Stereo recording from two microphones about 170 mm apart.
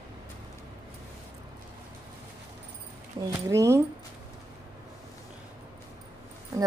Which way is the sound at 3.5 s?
20° right (ahead or behind).